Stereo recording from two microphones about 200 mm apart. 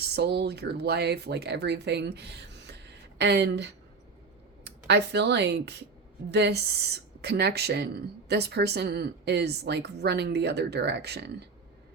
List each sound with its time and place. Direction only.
0.2 s a woman's voice: 55° right (ahead or behind)